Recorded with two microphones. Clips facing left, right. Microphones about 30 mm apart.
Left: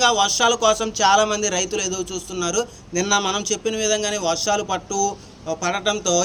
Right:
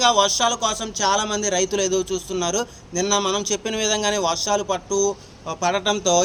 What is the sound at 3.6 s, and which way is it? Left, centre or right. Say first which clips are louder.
Speech: left 1 dB; right.